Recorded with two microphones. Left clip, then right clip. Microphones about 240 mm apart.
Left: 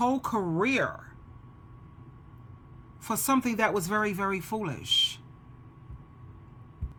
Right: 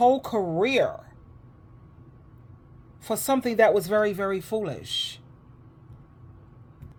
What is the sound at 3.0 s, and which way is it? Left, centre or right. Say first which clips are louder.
Speech: right 2 dB; centre.